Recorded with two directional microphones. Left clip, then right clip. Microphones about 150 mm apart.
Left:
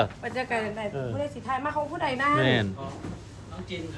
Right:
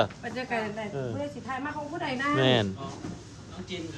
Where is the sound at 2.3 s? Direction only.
20° right (ahead or behind).